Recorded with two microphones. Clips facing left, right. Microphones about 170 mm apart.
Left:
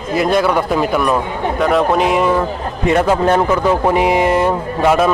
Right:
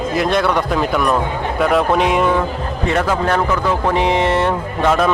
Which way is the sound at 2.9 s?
20° left (ahead or behind).